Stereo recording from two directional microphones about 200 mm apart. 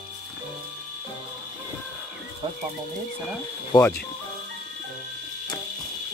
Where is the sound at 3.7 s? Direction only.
25° left (ahead or behind).